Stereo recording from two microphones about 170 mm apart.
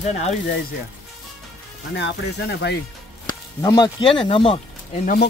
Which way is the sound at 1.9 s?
90° left.